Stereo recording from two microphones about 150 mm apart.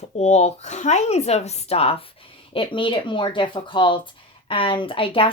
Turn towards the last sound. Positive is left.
turn(degrees=35)  # may be behind; listen again after turning